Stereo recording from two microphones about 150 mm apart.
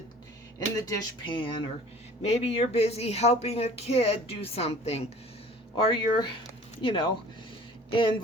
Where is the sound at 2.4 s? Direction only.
45° left (ahead or behind).